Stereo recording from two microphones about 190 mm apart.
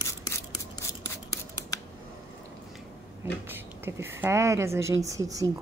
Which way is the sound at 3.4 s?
10° right (ahead or behind).